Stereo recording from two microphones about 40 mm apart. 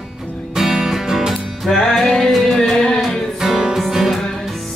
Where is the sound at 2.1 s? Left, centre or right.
Centre.